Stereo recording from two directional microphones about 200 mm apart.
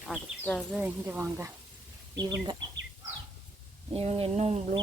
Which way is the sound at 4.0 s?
30° right (ahead or behind).